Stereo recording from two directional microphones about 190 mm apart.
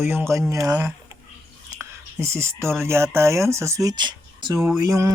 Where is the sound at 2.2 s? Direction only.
15° right (ahead or behind).